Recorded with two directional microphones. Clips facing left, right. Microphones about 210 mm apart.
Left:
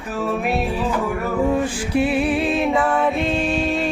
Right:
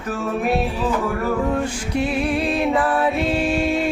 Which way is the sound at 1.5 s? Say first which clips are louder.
Left 3 dB; 5° left (ahead or behind).